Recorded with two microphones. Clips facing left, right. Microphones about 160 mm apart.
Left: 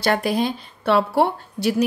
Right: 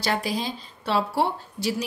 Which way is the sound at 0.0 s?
60° left (ahead or behind).